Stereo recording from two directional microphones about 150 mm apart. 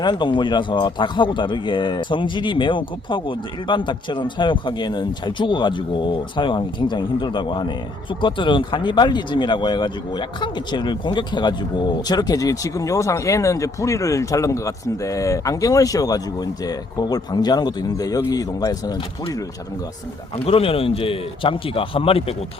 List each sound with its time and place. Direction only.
0.0 s speech: 30° left (ahead or behind)
20.4 s speech: 40° left (ahead or behind)